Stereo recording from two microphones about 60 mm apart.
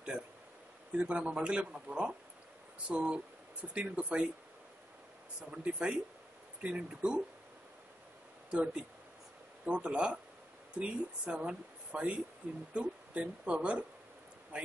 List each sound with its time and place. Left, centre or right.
0.9 s a man's voice: right
5.5 s a man's voice: right
8.5 s a man's voice: centre